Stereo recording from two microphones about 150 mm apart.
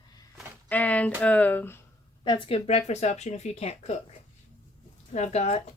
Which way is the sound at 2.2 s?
35° left (ahead or behind).